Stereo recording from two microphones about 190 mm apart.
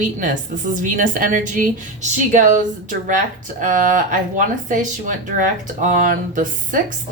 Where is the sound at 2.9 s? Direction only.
45° right (ahead or behind).